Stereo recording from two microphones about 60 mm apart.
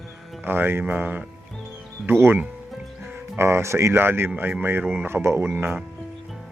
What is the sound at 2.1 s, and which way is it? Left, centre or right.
Speech, right.